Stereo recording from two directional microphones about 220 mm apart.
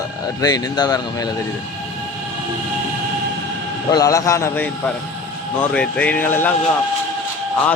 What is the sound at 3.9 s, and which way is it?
A man's voice, 15° left (ahead or behind).